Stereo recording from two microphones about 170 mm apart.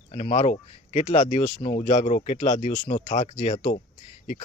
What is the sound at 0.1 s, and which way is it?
Speech, 40° left (ahead or behind).